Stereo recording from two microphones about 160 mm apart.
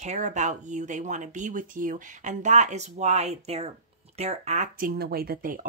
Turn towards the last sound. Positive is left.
turn(degrees=-70)  # may be behind; listen again after turning